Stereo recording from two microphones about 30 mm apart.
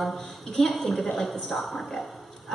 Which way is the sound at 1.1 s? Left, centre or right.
Centre.